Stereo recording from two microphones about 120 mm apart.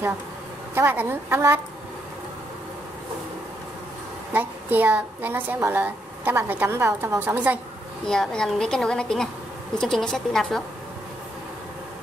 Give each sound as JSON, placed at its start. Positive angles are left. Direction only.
{"t": 0.7, "sound": "a woman's voice", "side_deg": -20}
{"t": 4.3, "sound": "a woman's voice", "side_deg": -15}
{"t": 8.0, "sound": "a woman's voice", "side_deg": 5}